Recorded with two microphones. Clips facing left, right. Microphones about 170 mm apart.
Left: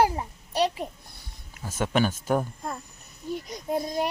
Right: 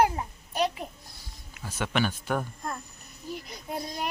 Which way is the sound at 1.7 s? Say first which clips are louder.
Left 4 dB; 45° left (ahead or behind).